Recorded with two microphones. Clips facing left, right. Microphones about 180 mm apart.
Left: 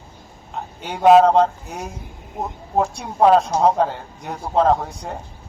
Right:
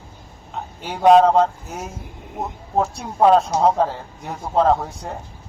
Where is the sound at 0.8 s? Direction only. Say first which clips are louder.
Left 1 dB; centre (ahead or behind).